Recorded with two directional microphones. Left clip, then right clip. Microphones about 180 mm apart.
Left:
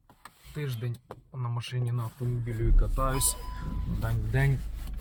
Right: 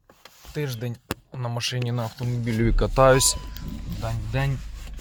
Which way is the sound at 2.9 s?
30° right (ahead or behind).